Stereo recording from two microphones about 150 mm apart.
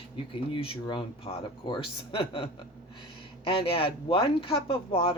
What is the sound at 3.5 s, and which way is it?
Speech, 40° left (ahead or behind).